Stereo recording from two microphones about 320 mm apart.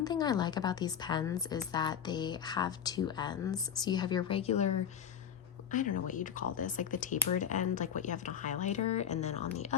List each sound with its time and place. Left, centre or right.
0.0 s a woman's voice: centre
5.7 s speech: left